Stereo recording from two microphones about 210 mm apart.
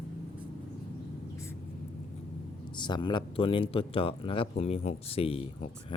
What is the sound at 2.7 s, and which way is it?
Speech, 20° left (ahead or behind).